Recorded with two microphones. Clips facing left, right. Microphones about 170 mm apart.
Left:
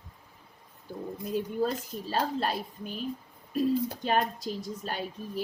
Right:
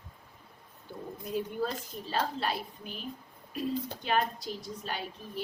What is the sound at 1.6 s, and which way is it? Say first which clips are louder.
A woman's voice: left 4 dB; 40° left (ahead or behind).